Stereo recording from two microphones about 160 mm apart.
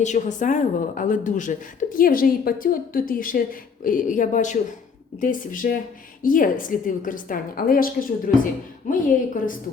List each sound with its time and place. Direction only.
0.0 s a woman's voice: 50° left (ahead or behind)